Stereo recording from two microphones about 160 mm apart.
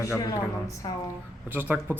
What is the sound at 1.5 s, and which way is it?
Speech, 10° right (ahead or behind).